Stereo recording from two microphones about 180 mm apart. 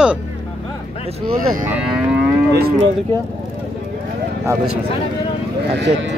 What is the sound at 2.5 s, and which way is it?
Cattle, 60° right (ahead or behind).